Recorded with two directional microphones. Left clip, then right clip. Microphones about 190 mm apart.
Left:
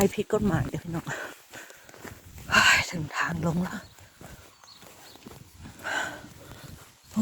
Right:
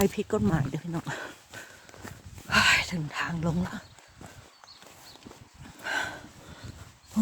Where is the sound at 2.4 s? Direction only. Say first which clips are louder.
Left 2 dB; 20° right (ahead or behind).